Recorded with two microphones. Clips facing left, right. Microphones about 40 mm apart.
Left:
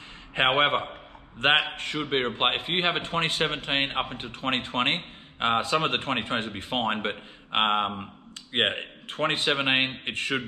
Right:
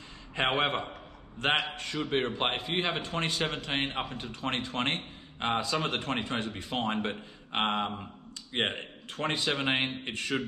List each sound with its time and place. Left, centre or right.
0.3 s a man's voice: left
7.9 s a man's voice: left